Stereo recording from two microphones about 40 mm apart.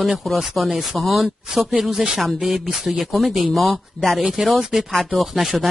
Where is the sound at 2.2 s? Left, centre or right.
Centre.